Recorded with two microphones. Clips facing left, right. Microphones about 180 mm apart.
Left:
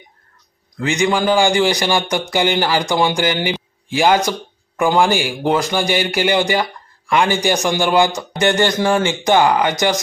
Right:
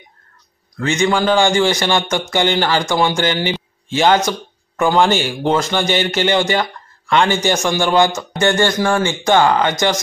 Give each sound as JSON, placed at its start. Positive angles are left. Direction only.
{"t": 0.7, "sound": "speech", "side_deg": 15}